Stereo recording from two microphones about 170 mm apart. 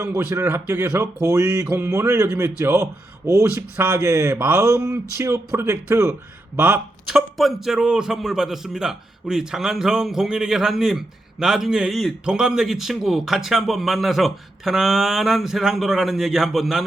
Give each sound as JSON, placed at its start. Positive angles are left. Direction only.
{"t": 0.0, "sound": "a man's voice", "side_deg": -15}